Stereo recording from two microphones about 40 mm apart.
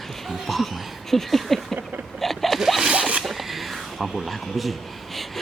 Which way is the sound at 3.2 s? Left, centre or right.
Centre.